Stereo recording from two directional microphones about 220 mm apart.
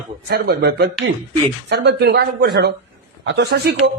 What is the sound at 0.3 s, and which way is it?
Speech, 45° right (ahead or behind).